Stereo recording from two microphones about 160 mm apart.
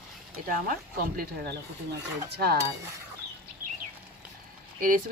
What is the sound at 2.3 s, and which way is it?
Cutlery, 80° right.